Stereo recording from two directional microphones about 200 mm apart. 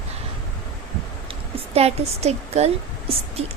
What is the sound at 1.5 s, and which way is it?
A woman's voice, 30° right (ahead or behind).